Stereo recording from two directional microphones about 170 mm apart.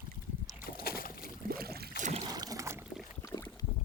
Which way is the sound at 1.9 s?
45° right (ahead or behind).